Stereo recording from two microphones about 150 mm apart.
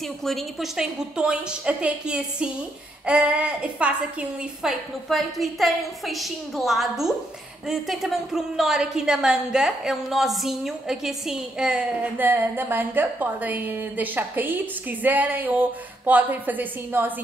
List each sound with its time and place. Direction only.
0.2 s a woman's voice: centre (ahead or behind)